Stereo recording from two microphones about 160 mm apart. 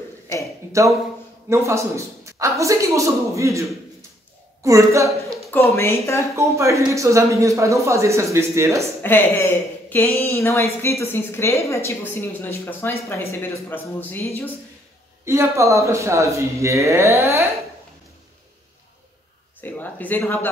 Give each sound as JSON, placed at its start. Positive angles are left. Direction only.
{"t": 1.5, "sound": "speech", "side_deg": -20}
{"t": 4.6, "sound": "speech", "side_deg": -20}
{"t": 5.5, "sound": "a woman's voice", "side_deg": 15}
{"t": 6.3, "sound": "speech", "side_deg": -20}
{"t": 9.0, "sound": "a woman's voice", "side_deg": 15}
{"t": 15.2, "sound": "speech", "side_deg": -20}
{"t": 19.6, "sound": "a woman's voice", "side_deg": 10}